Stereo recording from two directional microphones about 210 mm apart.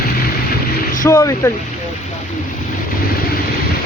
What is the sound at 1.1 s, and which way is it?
Speech, 10° left (ahead or behind).